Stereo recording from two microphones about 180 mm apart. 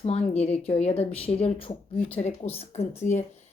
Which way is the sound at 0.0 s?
35° left (ahead or behind).